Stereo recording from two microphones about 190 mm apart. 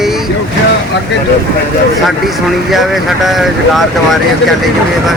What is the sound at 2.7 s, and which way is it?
Speech, centre (ahead or behind).